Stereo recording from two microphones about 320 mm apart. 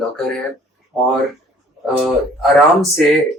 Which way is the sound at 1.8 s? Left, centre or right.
Centre.